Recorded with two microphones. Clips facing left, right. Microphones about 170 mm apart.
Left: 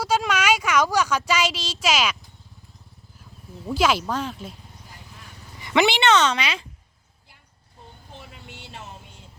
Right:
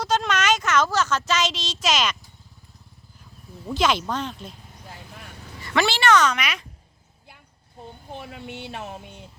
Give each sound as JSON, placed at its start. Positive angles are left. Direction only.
{"t": 0.0, "sound": "speech", "side_deg": 10}
{"t": 3.7, "sound": "speech", "side_deg": 5}
{"t": 5.5, "sound": "a woman's voice", "side_deg": 20}
{"t": 8.1, "sound": "vehicle", "side_deg": -60}